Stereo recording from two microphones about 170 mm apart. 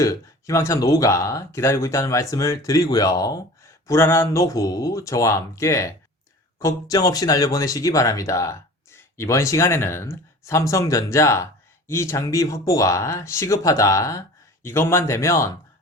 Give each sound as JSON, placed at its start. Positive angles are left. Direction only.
{"t": 0.0, "sound": "speech", "side_deg": 20}